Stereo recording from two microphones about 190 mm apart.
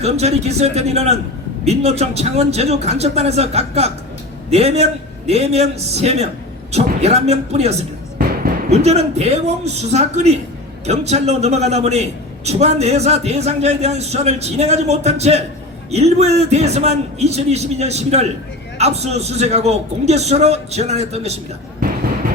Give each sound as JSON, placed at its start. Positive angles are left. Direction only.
{"t": 0.0, "sound": "a man's voice", "side_deg": -35}